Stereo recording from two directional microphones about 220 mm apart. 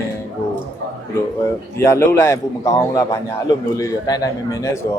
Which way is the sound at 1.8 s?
10° left (ahead or behind).